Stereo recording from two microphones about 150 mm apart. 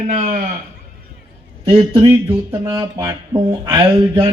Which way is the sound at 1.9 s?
20° right (ahead or behind).